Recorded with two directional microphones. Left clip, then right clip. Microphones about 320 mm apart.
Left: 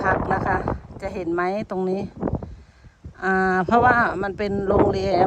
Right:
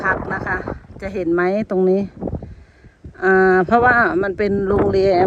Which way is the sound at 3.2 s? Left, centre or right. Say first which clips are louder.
Right 7 dB; centre.